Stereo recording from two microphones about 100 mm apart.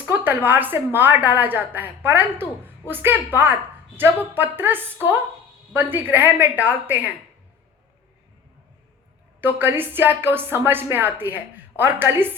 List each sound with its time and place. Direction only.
0.1 s a woman's voice: 20° right (ahead or behind)
9.4 s a woman's voice: 20° right (ahead or behind)